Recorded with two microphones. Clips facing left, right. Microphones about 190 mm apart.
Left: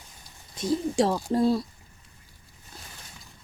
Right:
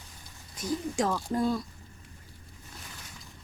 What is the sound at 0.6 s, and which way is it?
Speech, 30° left (ahead or behind).